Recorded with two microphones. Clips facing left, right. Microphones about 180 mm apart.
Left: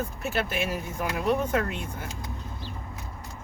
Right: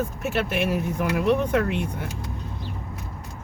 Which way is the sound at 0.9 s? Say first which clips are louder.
Right 3 dB; 65° right (ahead or behind).